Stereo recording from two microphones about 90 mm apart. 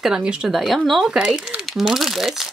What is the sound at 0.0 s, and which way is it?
A woman's voice, 10° right (ahead or behind).